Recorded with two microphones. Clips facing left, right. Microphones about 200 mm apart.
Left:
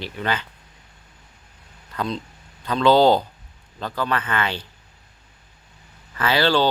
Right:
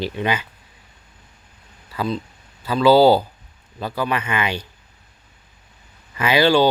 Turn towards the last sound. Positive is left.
turn(degrees=-10)  # may be behind; listen again after turning